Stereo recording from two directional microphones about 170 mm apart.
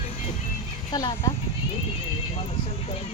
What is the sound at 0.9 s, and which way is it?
Speech, 25° left (ahead or behind).